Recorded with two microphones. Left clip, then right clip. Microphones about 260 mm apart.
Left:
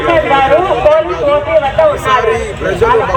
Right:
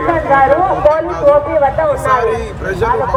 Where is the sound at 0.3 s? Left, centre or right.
Right.